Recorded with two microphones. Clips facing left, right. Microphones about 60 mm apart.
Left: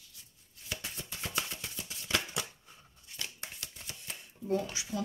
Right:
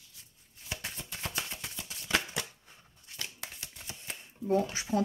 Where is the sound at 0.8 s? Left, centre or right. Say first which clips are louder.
Right 2 dB; right.